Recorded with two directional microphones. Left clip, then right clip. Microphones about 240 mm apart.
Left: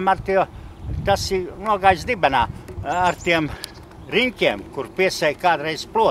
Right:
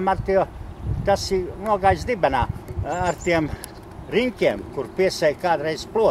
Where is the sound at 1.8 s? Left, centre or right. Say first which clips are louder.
Left 3 dB; centre.